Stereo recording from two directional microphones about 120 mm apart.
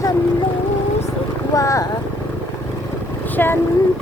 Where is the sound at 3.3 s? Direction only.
15° left (ahead or behind).